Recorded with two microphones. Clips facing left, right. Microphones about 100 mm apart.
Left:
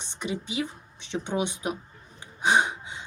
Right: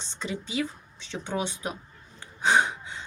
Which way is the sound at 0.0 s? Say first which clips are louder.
Left 2 dB; 15° left (ahead or behind).